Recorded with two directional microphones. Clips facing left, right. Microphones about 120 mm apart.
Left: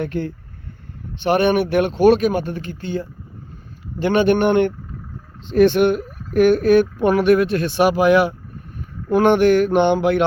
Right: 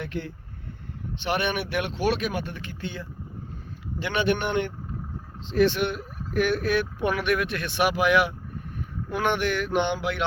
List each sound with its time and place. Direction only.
0.0 s speech: 45° left (ahead or behind)